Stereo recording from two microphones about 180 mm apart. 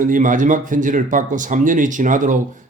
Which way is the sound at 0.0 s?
45° right (ahead or behind).